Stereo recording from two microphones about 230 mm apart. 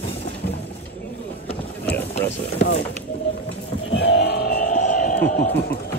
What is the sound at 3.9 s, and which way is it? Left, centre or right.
Music, left.